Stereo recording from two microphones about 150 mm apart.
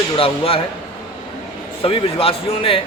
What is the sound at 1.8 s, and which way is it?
Speech, 40° left (ahead or behind).